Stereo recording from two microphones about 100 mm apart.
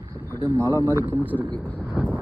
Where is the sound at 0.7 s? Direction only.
20° left (ahead or behind).